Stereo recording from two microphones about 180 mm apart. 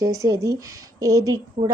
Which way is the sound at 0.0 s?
20° right (ahead or behind).